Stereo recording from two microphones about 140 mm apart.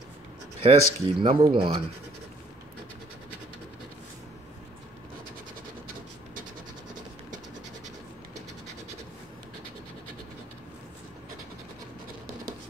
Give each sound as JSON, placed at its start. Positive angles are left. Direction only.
{"t": 0.6, "sound": "speech", "side_deg": -40}